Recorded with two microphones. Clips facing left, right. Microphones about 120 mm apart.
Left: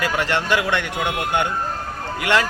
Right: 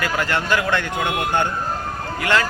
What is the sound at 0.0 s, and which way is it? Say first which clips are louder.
A man's voice: left 1 dB; 20° left (ahead or behind).